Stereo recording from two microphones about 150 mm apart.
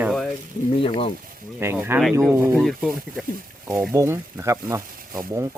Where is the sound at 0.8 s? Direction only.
40° left (ahead or behind).